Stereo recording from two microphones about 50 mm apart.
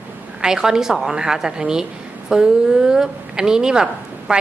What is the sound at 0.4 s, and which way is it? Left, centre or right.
A woman's voice, centre.